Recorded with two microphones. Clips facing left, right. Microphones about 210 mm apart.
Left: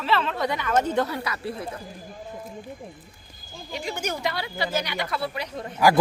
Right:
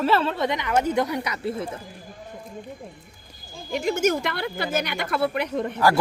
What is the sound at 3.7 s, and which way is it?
Speech, 45° right (ahead or behind).